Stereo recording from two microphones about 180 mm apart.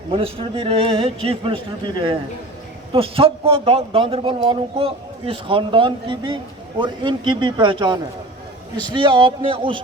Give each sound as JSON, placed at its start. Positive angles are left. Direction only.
{"t": 0.1, "sound": "a man's voice", "side_deg": -30}